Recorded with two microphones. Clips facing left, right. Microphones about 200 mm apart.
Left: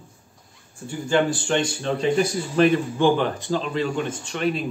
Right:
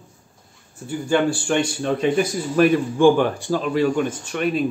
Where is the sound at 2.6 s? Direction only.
10° right (ahead or behind).